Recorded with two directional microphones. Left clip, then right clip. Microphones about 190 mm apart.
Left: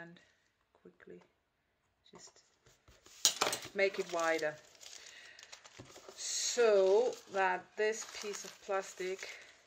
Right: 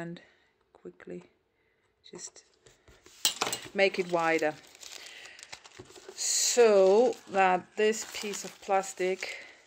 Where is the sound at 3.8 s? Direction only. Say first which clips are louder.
Right 7 dB; 45° right (ahead or behind).